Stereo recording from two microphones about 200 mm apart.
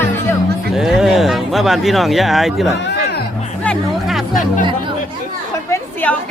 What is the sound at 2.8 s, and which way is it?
Music, 55° left (ahead or behind).